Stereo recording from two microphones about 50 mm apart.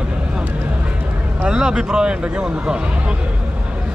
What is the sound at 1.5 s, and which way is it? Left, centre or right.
Speech, centre.